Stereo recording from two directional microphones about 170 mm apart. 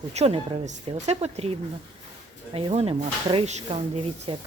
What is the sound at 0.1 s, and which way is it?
Speech, 40° right (ahead or behind).